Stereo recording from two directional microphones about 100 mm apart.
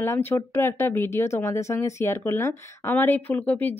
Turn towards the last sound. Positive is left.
turn(degrees=20)  # may be behind; listen again after turning